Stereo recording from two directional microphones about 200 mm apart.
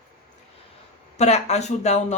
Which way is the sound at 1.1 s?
35° left (ahead or behind).